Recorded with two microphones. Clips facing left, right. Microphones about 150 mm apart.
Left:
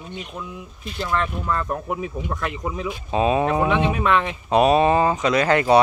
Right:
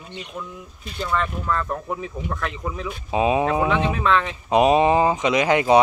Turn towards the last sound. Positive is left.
turn(degrees=-15)  # may be behind; listen again after turning